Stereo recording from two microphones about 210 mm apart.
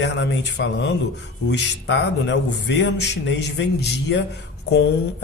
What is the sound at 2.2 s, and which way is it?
Speech, 55° left (ahead or behind).